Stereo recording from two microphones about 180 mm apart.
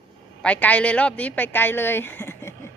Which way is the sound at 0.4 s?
10° left (ahead or behind).